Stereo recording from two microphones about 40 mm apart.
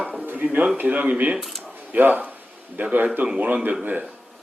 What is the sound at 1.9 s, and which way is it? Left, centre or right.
Speech, right.